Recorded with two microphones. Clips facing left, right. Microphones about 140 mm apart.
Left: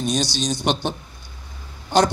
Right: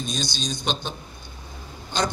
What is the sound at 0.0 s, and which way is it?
A man's voice, 75° left (ahead or behind).